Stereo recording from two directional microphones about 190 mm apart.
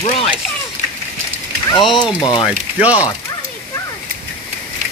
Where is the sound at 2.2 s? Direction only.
25° left (ahead or behind).